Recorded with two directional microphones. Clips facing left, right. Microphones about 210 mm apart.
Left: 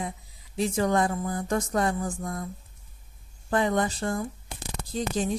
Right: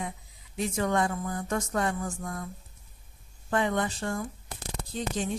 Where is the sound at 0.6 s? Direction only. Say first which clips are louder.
Left 3 dB; 35° left (ahead or behind).